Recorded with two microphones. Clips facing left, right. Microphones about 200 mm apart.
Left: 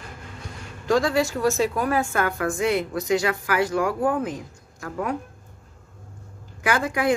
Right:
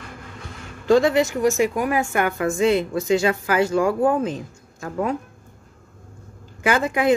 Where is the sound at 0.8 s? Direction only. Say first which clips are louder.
Right 4 dB; 25° right (ahead or behind).